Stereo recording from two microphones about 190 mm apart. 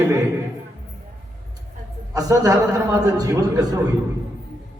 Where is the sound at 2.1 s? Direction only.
20° right (ahead or behind).